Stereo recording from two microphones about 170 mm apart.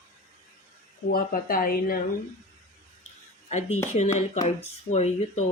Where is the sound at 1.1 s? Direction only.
55° left (ahead or behind).